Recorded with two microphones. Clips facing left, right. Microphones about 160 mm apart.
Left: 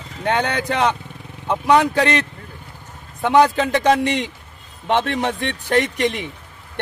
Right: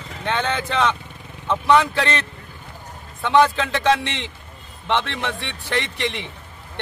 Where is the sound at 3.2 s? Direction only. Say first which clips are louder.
Left 2 dB; 45° left (ahead or behind).